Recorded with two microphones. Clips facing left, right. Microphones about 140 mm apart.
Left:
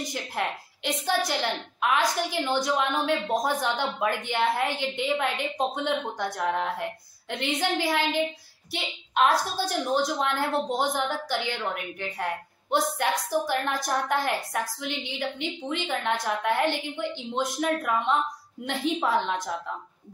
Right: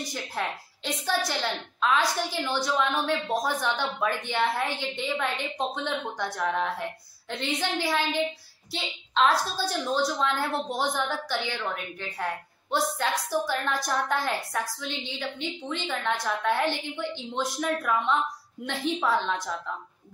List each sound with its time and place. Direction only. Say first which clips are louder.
0.0 s a woman's voice: left 2 dB; 20° left (ahead or behind)